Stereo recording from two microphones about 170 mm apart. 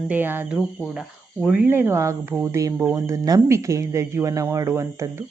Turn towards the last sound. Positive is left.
turn(degrees=-15)  # may be behind; listen again after turning